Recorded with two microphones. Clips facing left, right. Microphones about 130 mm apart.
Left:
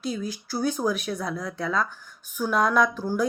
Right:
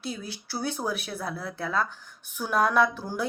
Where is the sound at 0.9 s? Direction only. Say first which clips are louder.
Left 5 dB; 35° right (ahead or behind).